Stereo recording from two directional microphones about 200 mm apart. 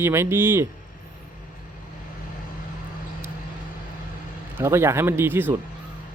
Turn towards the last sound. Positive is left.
turn(degrees=-10)  # may be behind; listen again after turning